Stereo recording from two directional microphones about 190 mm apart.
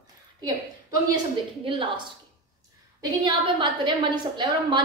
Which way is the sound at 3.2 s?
25° right (ahead or behind).